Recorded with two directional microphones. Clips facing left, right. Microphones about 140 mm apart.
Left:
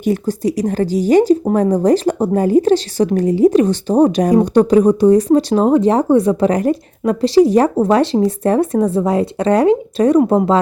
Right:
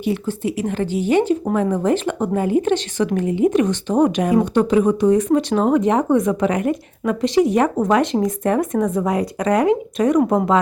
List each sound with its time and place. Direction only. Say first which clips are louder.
0.0 s speech: left 5 dB; 40° left (ahead or behind)